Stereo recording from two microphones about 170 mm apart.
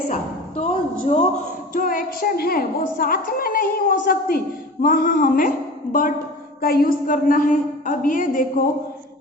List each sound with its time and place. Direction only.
0.1 s speech: 45° left (ahead or behind)
1.7 s a woman's voice: 55° left (ahead or behind)